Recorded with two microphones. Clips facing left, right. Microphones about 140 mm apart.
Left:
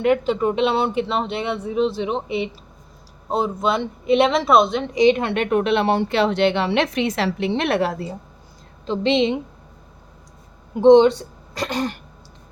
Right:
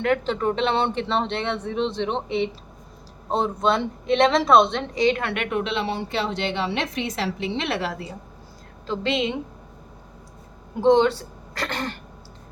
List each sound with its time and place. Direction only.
0.0 s speech: 15° left (ahead or behind)
4.9 s a woman's voice: 20° left (ahead or behind)
5.3 s speech: 35° left (ahead or behind)
5.5 s a woman's voice: 60° left (ahead or behind)
8.9 s a woman's voice: 25° left (ahead or behind)
10.8 s a woman's voice: 20° left (ahead or behind)